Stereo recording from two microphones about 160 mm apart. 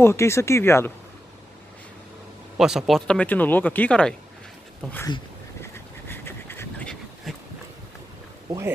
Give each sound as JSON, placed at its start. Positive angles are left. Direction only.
{"t": 0.0, "sound": "speech", "side_deg": 15}
{"t": 2.5, "sound": "speech", "side_deg": -5}
{"t": 5.6, "sound": "a sound", "side_deg": 15}
{"t": 8.5, "sound": "speech", "side_deg": -20}